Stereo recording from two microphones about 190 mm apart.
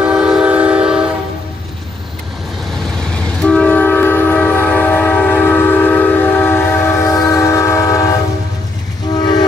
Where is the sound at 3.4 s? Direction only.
5° left (ahead or behind).